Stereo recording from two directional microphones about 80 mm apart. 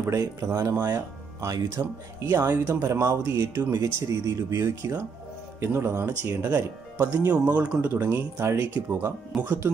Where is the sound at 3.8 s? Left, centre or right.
Right.